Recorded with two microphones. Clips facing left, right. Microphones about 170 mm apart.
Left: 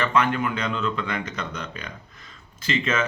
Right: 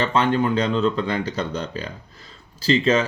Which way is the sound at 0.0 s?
30° right (ahead or behind).